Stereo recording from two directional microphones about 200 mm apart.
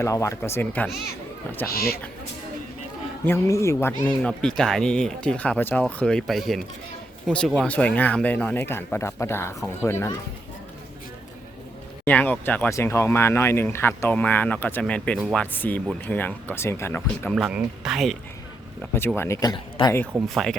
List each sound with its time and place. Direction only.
0.0 s speech: 15° left (ahead or behind)
1.7 s speech: 50° left (ahead or behind)
3.2 s speech: 15° left (ahead or behind)
12.0 s speech: 10° left (ahead or behind)
17.3 s speech: centre (ahead or behind)
18.9 s speech: 10° left (ahead or behind)
20.2 s speech: centre (ahead or behind)